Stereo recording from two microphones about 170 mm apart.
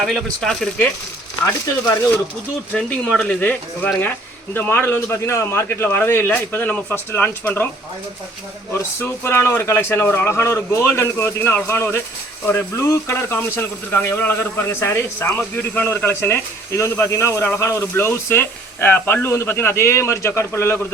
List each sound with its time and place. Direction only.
0.0 s speech: centre (ahead or behind)
1.5 s speech: 20° left (ahead or behind)
2.7 s speech: 5° left (ahead or behind)
8.7 s speech: 15° left (ahead or behind)